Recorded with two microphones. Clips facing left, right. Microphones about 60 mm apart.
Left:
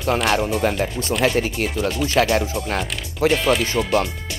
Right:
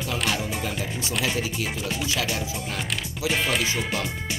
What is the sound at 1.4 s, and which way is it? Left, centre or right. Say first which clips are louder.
Speech: left 7 dB; left.